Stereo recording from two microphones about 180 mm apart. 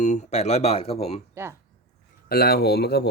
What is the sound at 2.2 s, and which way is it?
Speech, 60° left (ahead or behind).